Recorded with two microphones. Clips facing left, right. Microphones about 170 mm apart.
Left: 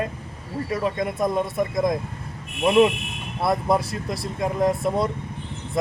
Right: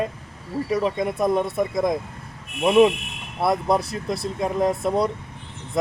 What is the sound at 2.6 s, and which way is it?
Speech, 15° right (ahead or behind).